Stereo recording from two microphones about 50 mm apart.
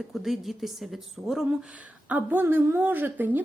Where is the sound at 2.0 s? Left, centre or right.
Right.